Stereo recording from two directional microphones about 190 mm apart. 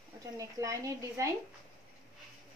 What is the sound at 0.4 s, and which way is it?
Speech, 15° right (ahead or behind).